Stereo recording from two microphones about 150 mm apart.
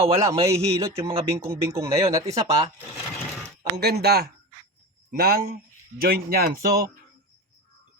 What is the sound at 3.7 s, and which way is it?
Speech, 90° right.